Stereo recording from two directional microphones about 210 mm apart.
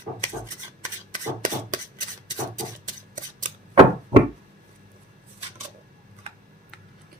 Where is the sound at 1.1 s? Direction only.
40° right (ahead or behind).